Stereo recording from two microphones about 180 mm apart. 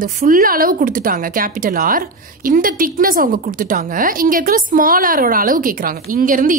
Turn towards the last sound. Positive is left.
turn(degrees=-50)  # may be behind; listen again after turning